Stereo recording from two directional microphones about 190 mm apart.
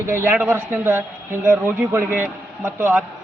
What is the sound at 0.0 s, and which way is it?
Speech, 10° right (ahead or behind).